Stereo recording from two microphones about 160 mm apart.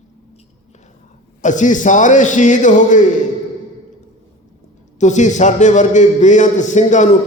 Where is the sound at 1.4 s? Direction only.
50° left (ahead or behind).